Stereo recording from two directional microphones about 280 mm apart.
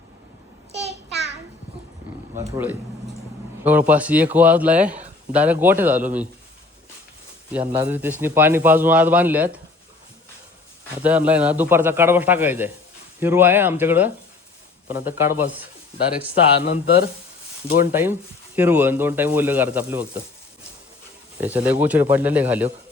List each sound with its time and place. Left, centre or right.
0.7 s a sound: right
3.6 s speech: centre
7.5 s speech: centre
11.0 s speech: centre
16.6 s speech: left
17.7 s speech: centre
21.4 s speech: centre